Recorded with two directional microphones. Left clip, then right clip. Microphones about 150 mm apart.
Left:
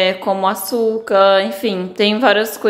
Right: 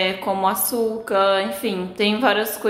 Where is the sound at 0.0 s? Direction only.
35° left (ahead or behind).